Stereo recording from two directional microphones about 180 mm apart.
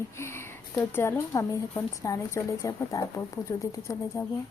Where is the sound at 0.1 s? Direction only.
15° left (ahead or behind).